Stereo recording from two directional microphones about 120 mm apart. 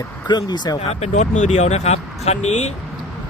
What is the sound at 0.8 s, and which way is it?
Speech, 70° left (ahead or behind).